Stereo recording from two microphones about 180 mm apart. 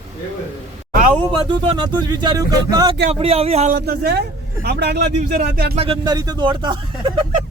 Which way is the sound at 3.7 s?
60° right (ahead or behind).